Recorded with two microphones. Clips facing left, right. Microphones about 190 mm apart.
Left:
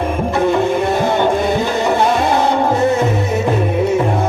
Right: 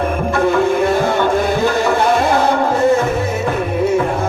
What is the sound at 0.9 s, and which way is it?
Music, 20° left (ahead or behind).